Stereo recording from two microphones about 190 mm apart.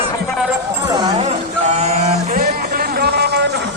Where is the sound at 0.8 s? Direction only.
20° right (ahead or behind).